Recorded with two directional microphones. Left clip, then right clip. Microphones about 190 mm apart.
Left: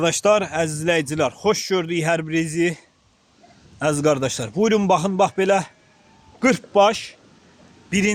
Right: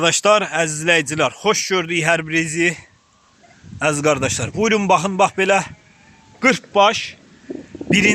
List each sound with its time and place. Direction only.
0.0 s speech: 10° left (ahead or behind)